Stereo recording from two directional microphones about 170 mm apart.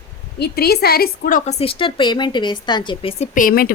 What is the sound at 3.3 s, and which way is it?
Speech, 55° left (ahead or behind).